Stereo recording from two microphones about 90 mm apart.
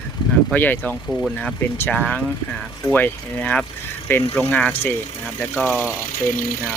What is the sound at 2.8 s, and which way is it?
Speech, 20° left (ahead or behind).